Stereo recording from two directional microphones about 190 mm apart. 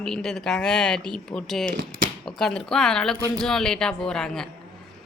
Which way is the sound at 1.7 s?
45° right (ahead or behind).